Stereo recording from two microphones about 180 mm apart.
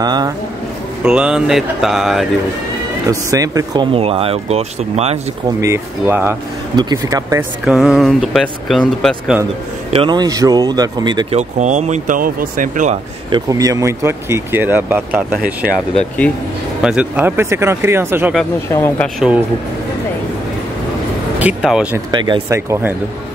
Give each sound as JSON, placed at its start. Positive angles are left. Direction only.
{"t": 0.0, "sound": "speech", "side_deg": -20}
{"t": 1.0, "sound": "speech", "side_deg": -5}
{"t": 3.1, "sound": "speech", "side_deg": -20}
{"t": 5.6, "sound": "speech", "side_deg": -15}
{"t": 7.6, "sound": "speech", "side_deg": 0}
{"t": 9.9, "sound": "speech", "side_deg": -25}
{"t": 11.3, "sound": "speech", "side_deg": -40}
{"t": 13.3, "sound": "speech", "side_deg": -20}
{"t": 16.8, "sound": "speech", "side_deg": -5}
{"t": 18.7, "sound": "speech", "side_deg": 15}
{"t": 19.1, "sound": "speech", "side_deg": -5}
{"t": 21.4, "sound": "vehicle", "side_deg": -5}
{"t": 21.9, "sound": "speech", "side_deg": -25}